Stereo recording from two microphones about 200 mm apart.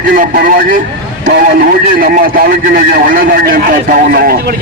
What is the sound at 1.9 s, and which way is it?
A man's voice, 45° right (ahead or behind).